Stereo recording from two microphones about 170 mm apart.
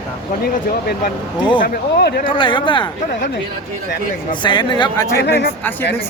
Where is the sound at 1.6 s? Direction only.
55° left (ahead or behind).